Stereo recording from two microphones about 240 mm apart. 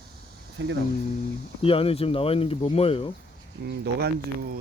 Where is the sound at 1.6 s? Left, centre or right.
Left.